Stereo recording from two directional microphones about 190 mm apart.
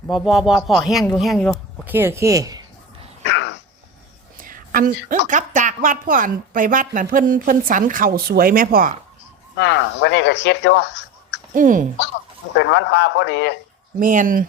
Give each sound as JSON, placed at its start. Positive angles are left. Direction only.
{"t": 0.1, "sound": "speech", "side_deg": 0}
{"t": 1.9, "sound": "speech", "side_deg": -10}
{"t": 3.2, "sound": "dog", "side_deg": 70}
{"t": 4.4, "sound": "whispering", "side_deg": -45}
{"t": 5.3, "sound": "speech", "side_deg": -40}
{"t": 9.6, "sound": "speech", "side_deg": 65}
{"t": 11.5, "sound": "speech", "side_deg": -45}
{"t": 12.5, "sound": "speech", "side_deg": 65}
{"t": 14.0, "sound": "speech", "side_deg": -45}